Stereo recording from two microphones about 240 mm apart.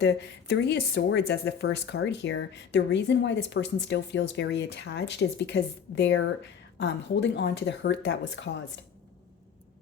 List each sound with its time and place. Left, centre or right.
0.0 s speech: left